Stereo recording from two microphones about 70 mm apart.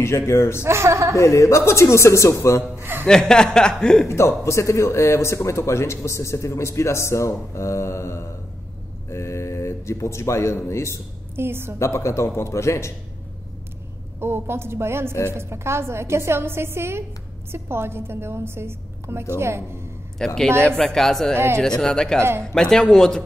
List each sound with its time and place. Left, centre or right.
0.3 s speech: left
0.7 s a woman's voice: right
1.1 s speech: left
2.8 s a man's voice: right
3.1 s speech: centre
4.1 s speech: left
11.3 s a woman's voice: right
11.8 s speech: left
14.2 s a woman's voice: right
20.2 s speech: centre